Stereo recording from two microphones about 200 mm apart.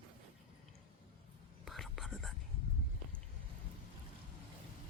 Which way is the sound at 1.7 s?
Centre (ahead or behind).